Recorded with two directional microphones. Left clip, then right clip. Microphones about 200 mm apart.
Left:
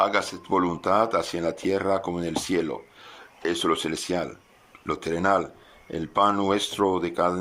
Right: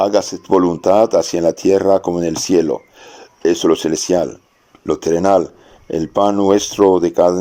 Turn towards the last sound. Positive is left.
turn(degrees=-35)  # may be behind; listen again after turning